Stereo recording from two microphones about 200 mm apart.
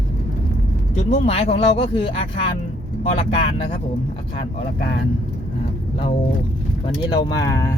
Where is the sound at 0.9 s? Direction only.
35° left (ahead or behind).